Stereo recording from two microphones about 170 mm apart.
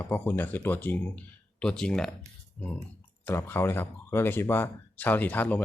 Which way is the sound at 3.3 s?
15° left (ahead or behind).